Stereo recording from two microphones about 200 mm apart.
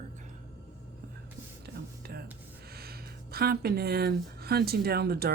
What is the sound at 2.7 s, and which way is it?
Speech, 50° right (ahead or behind).